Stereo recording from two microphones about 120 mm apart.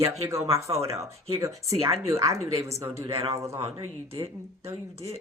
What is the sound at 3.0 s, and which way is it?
Speech, 55° right (ahead or behind).